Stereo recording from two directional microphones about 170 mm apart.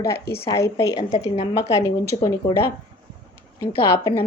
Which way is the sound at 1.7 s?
20° left (ahead or behind).